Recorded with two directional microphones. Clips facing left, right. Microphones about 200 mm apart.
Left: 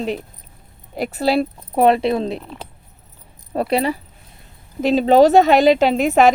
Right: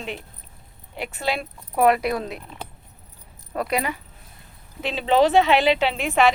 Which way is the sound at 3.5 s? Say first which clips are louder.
Left 6 dB; 30° left (ahead or behind).